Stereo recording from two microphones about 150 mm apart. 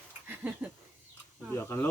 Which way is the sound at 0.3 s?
10° right (ahead or behind).